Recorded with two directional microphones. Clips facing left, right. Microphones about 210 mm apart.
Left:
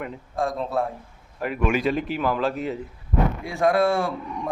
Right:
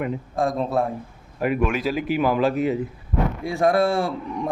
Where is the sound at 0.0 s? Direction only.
10° right (ahead or behind).